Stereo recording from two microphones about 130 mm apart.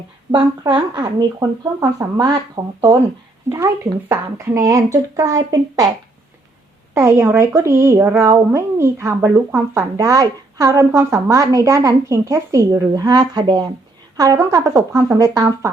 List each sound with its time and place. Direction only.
0.3 s speech: 35° right (ahead or behind)
4.1 s speech: 25° right (ahead or behind)
6.9 s speech: 20° right (ahead or behind); by 13.7 s 40° right (ahead or behind)
14.2 s speech: 25° right (ahead or behind)